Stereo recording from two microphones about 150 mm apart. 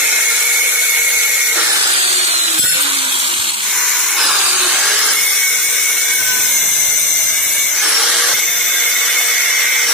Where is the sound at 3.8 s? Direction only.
Centre (ahead or behind).